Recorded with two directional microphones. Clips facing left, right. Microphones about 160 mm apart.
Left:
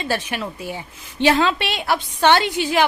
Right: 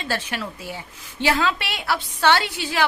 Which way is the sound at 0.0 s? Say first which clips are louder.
Left 3 dB; 15° left (ahead or behind).